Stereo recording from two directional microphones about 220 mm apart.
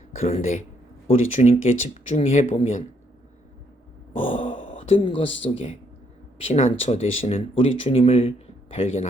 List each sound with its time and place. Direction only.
0.1 s speech: 30° left (ahead or behind)
4.1 s a sound: 25° left (ahead or behind)
5.4 s speech: 25° left (ahead or behind)